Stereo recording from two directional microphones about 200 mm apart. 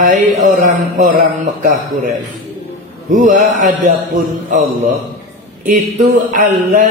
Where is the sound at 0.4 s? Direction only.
35° right (ahead or behind).